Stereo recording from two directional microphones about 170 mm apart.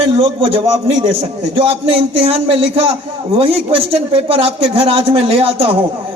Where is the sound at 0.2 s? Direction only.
35° right (ahead or behind).